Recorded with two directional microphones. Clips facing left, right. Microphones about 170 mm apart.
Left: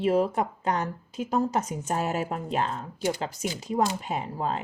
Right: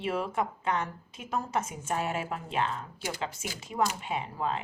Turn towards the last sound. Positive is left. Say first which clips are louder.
# left 3 dB
turn(degrees=40)  # may be behind; listen again after turning